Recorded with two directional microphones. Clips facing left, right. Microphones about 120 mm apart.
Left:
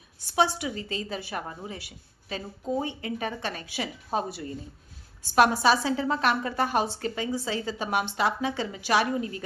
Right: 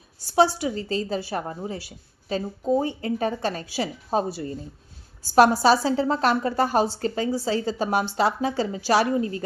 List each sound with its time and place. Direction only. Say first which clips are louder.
0.3 s a woman's voice: right 5 dB; 35° right (ahead or behind)